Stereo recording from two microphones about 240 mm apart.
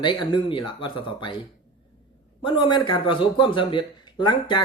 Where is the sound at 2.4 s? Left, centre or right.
Centre.